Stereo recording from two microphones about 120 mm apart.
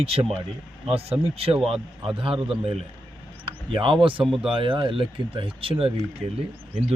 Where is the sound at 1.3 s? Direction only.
55° right (ahead or behind).